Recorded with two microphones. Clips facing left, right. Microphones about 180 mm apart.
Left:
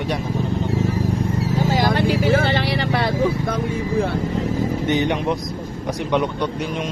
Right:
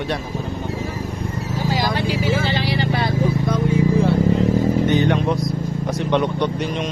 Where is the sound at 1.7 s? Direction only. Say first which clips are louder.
Left 2 dB; 50° left (ahead or behind).